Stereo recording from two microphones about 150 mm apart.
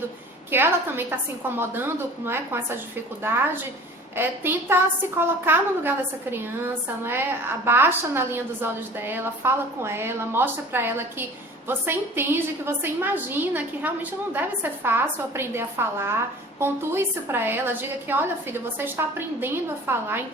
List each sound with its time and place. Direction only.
0.5 s a woman's voice: 15° right (ahead or behind)